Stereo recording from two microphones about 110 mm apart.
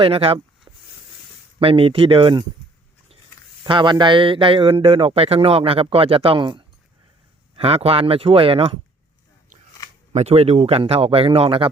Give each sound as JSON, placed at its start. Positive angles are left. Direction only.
{"t": 0.0, "sound": "a man's voice", "side_deg": -55}
{"t": 3.6, "sound": "a man's voice", "side_deg": -45}
{"t": 7.5, "sound": "a man's voice", "side_deg": -65}
{"t": 10.1, "sound": "a man's voice", "side_deg": -80}